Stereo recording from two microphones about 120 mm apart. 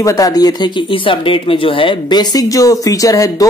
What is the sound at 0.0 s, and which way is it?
Speech, 30° left (ahead or behind).